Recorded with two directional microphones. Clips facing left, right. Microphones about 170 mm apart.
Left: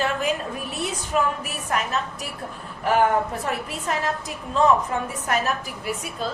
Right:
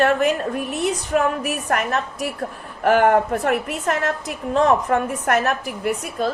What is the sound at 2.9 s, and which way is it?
A woman's voice, 70° right (ahead or behind).